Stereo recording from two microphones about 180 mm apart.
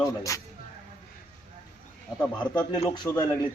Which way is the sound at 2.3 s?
25° left (ahead or behind).